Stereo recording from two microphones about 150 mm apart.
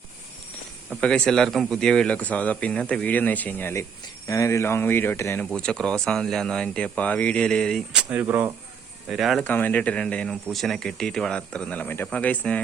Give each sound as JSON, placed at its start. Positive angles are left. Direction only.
{"t": 0.9, "sound": "speech", "side_deg": 10}
{"t": 5.5, "sound": "speech", "side_deg": 5}
{"t": 9.0, "sound": "speech", "side_deg": 0}
{"t": 9.4, "sound": "speech", "side_deg": 10}